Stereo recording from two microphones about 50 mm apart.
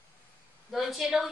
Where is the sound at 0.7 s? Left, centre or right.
Centre.